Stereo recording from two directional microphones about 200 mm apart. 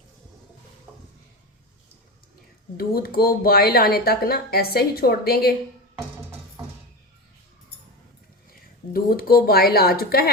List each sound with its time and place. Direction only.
2.7 s speech: 50° left (ahead or behind)
8.9 s speech: 45° left (ahead or behind)